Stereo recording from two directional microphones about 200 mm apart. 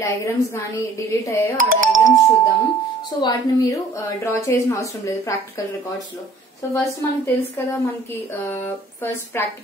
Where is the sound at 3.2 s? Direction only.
15° left (ahead or behind).